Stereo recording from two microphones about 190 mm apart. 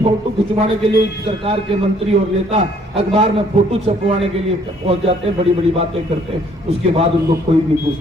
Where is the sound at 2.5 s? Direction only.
30° right (ahead or behind).